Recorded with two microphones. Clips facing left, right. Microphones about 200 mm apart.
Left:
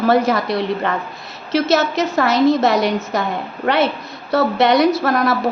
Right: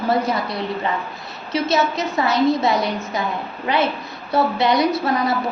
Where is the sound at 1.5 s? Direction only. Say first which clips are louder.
Left 4 dB; 90° left.